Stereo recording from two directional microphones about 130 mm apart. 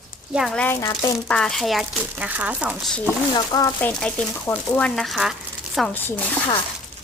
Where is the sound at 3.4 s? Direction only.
30° left (ahead or behind).